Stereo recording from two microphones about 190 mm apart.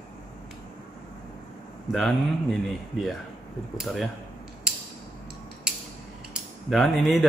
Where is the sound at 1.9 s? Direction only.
Centre (ahead or behind).